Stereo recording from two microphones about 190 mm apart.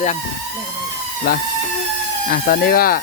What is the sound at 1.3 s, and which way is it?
Speech, 50° left (ahead or behind).